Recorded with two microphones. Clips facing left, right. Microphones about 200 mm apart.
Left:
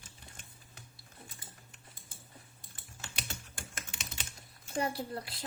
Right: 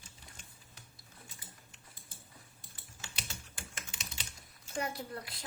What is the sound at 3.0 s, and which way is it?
Typing, 55° left (ahead or behind).